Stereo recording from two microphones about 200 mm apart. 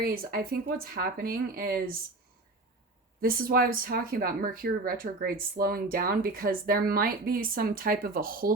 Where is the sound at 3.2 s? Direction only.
45° right (ahead or behind).